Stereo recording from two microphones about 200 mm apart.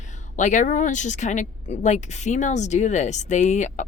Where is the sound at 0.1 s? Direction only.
40° left (ahead or behind).